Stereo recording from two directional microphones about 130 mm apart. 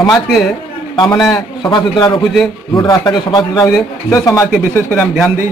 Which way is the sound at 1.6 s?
35° left (ahead or behind).